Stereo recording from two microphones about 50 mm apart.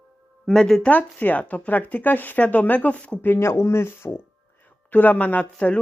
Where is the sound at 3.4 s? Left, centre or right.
Left.